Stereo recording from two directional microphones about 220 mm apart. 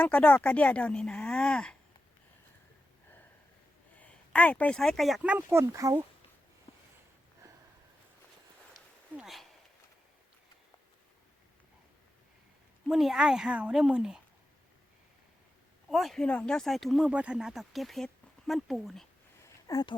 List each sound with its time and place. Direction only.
0.0 s speech: 5° left (ahead or behind)
3.9 s speech: 5° left (ahead or behind); by 6.1 s 15° right (ahead or behind)
8.7 s a sound: centre (ahead or behind)
12.9 s speech: centre (ahead or behind)
15.9 s speech: centre (ahead or behind)
19.6 s speech: 15° left (ahead or behind)